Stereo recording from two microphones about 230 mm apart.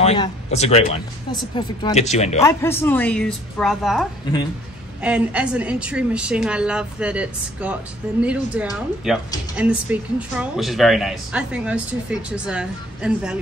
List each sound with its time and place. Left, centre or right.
0.0 s speech: left
2.4 s speech: centre